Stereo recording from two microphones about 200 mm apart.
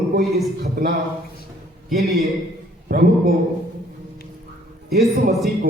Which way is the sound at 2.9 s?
50° right (ahead or behind).